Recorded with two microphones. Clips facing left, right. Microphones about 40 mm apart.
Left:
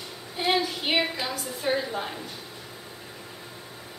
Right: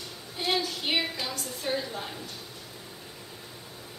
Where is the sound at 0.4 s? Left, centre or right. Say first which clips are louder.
Left 4 dB; centre.